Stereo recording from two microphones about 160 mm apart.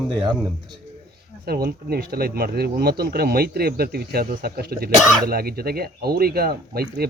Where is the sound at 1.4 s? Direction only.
75° right (ahead or behind).